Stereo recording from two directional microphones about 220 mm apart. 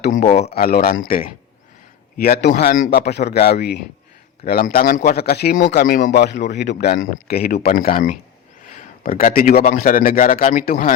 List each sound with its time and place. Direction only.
0.0 s a man's voice: 35° left (ahead or behind)